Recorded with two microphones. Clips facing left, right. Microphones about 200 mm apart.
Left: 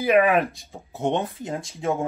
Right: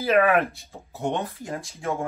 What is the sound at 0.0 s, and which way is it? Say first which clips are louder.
Speech: left 1 dB; 15° left (ahead or behind).